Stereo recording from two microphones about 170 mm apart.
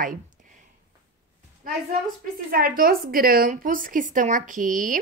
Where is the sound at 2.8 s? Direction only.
60° right (ahead or behind).